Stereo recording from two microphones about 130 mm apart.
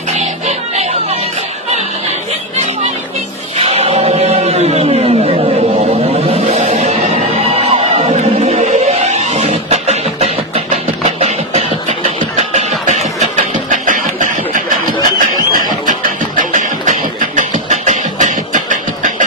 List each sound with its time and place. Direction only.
0.2 s music: 60° right (ahead or behind)
3.6 s chant: 55° right (ahead or behind)
6.2 s music: 50° right (ahead or behind); by 7.2 s 70° right (ahead or behind)
7.6 s music: 55° right (ahead or behind)
12.4 s a sound: 60° right (ahead or behind); by 15.3 s 90° right
15.9 s music: 85° right